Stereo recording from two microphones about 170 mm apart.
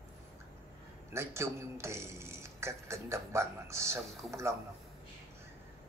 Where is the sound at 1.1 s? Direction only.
15° right (ahead or behind).